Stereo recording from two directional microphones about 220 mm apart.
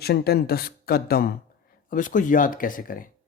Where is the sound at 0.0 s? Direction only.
45° left (ahead or behind).